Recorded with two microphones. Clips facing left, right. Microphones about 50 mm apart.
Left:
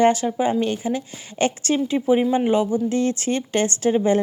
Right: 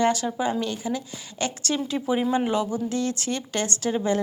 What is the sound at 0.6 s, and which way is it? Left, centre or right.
Speech, left.